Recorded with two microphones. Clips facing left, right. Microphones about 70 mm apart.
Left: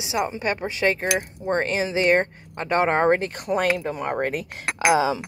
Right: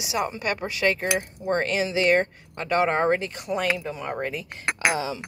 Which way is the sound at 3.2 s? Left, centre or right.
Left.